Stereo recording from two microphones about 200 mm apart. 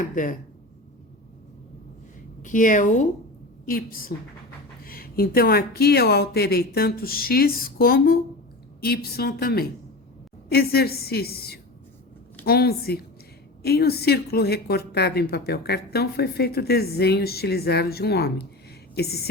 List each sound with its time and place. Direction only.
0.1 s a woman's voice: 40° left (ahead or behind)
2.4 s a woman's voice: 40° left (ahead or behind)